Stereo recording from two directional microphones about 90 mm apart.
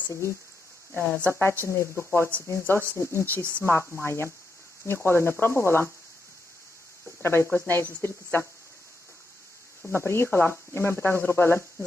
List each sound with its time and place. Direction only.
0.1 s speech: 30° left (ahead or behind)
1.0 s speech: 10° left (ahead or behind)
1.6 s speech: 30° left (ahead or behind)
7.2 s speech: 25° left (ahead or behind)
9.8 s speech: 25° left (ahead or behind)